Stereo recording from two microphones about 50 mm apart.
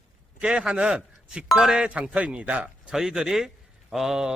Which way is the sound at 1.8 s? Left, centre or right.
Right.